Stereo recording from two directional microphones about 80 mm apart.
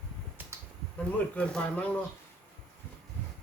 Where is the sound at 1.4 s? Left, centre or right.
Centre.